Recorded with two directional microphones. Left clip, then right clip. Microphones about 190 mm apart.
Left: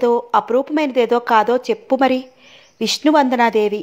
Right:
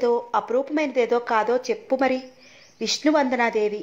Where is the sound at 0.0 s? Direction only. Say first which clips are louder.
Left 6 dB; 45° left (ahead or behind).